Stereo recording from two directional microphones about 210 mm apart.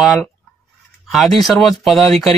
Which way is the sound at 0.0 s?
Centre (ahead or behind).